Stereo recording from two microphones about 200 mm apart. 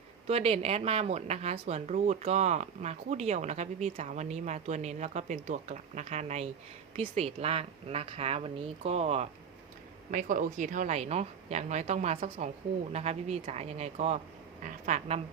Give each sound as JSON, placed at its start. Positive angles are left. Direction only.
{"t": 0.3, "sound": "speech", "side_deg": -30}
{"t": 10.1, "sound": "speech", "side_deg": -40}